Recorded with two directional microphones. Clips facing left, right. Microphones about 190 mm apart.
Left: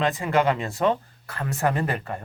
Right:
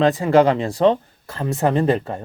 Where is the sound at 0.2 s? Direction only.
35° right (ahead or behind).